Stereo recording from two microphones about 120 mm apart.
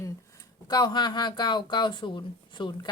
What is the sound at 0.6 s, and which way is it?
Speech, 35° left (ahead or behind).